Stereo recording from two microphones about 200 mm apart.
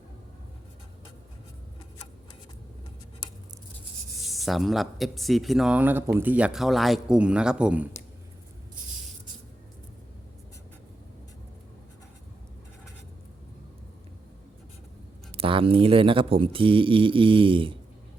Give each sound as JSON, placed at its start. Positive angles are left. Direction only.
{"t": 4.2, "sound": "speech", "side_deg": 0}
{"t": 15.3, "sound": "speech", "side_deg": -25}